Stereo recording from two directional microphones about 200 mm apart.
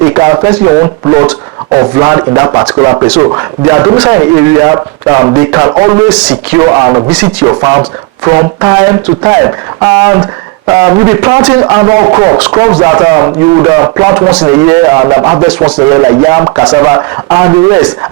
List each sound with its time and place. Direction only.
0.2 s speech: 15° right (ahead or behind)